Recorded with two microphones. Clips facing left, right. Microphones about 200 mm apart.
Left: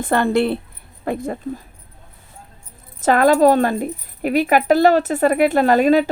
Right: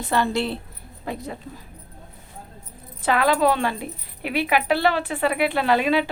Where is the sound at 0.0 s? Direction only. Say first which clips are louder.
Left 6 dB; 55° left (ahead or behind).